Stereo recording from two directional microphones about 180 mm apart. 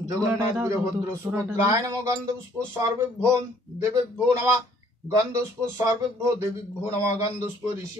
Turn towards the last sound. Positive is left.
turn(degrees=-15)  # may be behind; listen again after turning